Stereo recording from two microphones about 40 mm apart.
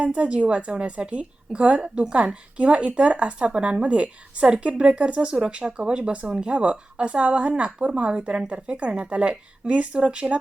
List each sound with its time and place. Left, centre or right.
0.0 s a woman's voice: right